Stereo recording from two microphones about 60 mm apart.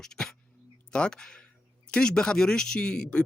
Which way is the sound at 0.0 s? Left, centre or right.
Centre.